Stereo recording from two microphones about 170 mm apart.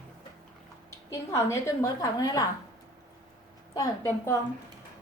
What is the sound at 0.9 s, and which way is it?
A woman's voice, 15° left (ahead or behind).